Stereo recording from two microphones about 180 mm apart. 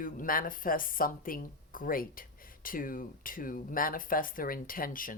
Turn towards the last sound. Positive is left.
turn(degrees=50)  # may be behind; listen again after turning